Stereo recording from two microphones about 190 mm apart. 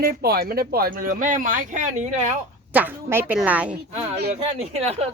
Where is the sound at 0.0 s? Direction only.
55° right (ahead or behind).